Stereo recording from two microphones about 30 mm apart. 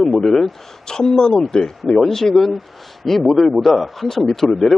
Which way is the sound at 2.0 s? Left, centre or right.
Centre.